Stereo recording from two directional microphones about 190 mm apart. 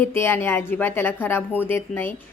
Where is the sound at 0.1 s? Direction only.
10° left (ahead or behind).